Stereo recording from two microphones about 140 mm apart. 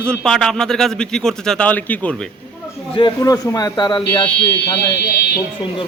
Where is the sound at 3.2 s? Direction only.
25° left (ahead or behind).